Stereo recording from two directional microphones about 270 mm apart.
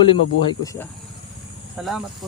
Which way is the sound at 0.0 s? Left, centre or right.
Centre.